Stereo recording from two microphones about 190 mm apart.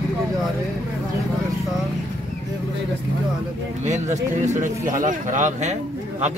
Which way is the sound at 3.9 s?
40° right (ahead or behind).